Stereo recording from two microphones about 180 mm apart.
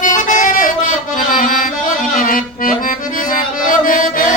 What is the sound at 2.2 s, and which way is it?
Accordion, 50° left (ahead or behind).